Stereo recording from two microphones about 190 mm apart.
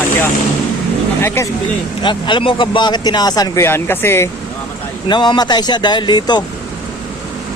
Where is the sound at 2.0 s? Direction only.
25° left (ahead or behind).